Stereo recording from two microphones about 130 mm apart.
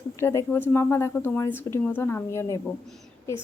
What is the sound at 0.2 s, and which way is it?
A woman's voice, 20° left (ahead or behind).